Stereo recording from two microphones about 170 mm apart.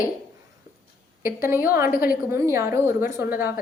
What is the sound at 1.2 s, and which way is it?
Speech, 55° left (ahead or behind).